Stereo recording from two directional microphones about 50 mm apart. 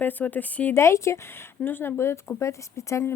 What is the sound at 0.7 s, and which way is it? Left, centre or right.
Speech, left.